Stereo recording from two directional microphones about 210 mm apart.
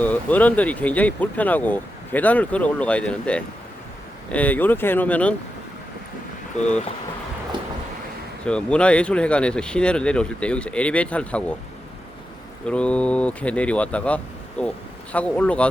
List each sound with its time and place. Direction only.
0.0 s speech: 10° left (ahead or behind)
6.6 s speech: 35° left (ahead or behind)
8.4 s speech: 5° left (ahead or behind)
12.6 s speech: 5° left (ahead or behind)